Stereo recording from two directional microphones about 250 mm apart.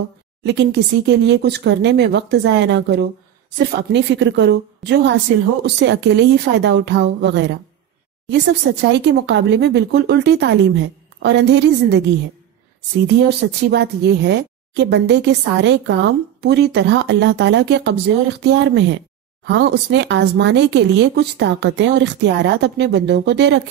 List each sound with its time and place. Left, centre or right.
0.4 s speech: right
8.8 s speech: right
13.0 s speech: right